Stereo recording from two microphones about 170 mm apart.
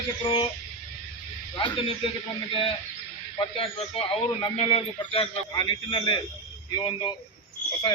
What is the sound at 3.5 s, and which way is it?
Speech, 35° left (ahead or behind).